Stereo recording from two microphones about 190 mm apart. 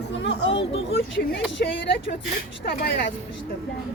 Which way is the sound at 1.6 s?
55° left (ahead or behind).